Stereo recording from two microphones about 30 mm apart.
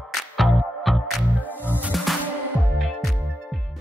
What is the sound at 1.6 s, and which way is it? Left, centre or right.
Music, right.